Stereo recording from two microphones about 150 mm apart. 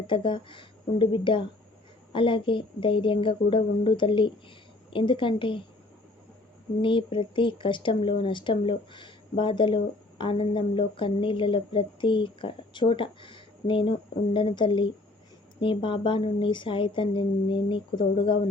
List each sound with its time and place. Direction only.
0.1 s speech: 35° left (ahead or behind)
6.8 s speech: 35° left (ahead or behind)